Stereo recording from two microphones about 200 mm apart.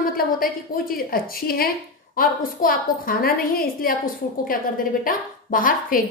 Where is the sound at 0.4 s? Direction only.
45° left (ahead or behind).